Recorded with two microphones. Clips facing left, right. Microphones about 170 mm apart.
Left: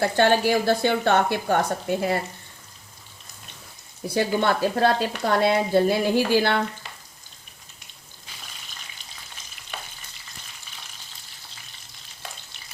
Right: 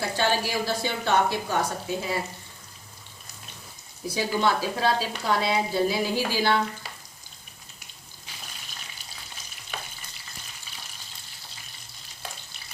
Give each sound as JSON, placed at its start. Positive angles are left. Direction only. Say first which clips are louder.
{"t": 0.0, "sound": "speech", "louder": "left 6 dB", "side_deg": 60}
{"t": 4.1, "sound": "speech", "louder": "left 3 dB", "side_deg": 55}